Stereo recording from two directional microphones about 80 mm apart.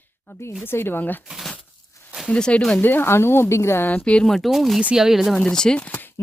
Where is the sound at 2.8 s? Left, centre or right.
Left.